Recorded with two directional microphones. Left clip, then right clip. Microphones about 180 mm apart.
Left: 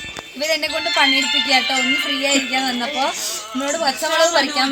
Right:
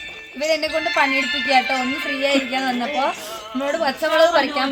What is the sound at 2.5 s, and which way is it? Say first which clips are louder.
A woman's voice: left 1 dB; 5° right (ahead or behind).